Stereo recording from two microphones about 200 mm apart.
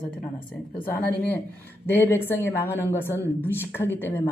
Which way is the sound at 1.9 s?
10° left (ahead or behind).